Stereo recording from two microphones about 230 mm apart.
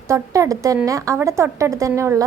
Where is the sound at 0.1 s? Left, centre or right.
Centre.